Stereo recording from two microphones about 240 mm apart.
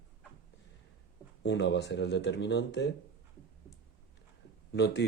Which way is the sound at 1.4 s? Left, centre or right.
Left.